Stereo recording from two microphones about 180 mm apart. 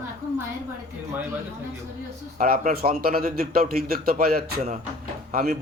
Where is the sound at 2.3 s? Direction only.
50° right (ahead or behind).